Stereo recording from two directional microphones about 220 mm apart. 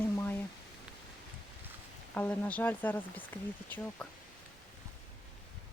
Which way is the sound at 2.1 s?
5° left (ahead or behind).